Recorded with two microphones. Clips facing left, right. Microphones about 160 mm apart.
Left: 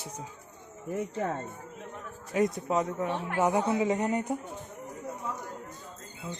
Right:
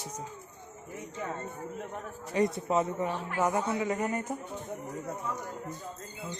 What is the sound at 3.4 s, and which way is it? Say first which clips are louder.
Speech: left 3 dB; 15° left (ahead or behind).